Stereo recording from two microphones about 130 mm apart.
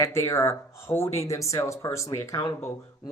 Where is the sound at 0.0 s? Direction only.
20° left (ahead or behind).